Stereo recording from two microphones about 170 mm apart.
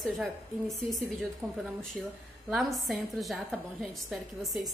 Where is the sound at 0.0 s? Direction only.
Centre (ahead or behind).